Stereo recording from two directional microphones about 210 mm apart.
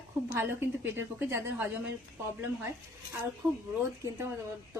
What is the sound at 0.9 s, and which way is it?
Speech, 10° right (ahead or behind).